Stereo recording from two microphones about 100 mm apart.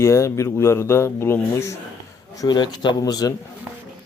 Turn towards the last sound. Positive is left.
turn(degrees=40)  # may be behind; listen again after turning